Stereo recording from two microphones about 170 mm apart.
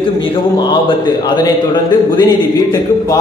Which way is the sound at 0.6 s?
25° left (ahead or behind).